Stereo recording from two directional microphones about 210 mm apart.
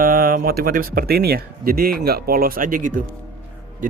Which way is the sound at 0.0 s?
45° right (ahead or behind).